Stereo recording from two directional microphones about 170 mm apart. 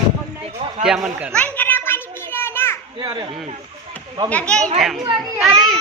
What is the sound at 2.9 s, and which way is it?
Speech, 30° right (ahead or behind).